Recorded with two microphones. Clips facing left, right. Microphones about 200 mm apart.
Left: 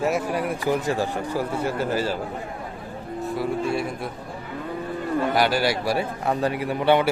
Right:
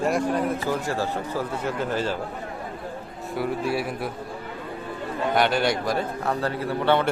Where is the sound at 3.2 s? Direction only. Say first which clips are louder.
Left 1 dB; centre (ahead or behind).